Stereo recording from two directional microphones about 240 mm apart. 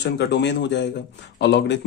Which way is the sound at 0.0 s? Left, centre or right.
Left.